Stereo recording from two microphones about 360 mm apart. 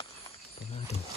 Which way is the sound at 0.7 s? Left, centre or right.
Centre.